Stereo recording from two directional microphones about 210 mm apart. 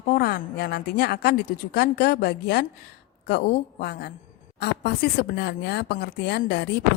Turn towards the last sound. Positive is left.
turn(degrees=50)  # may be behind; listen again after turning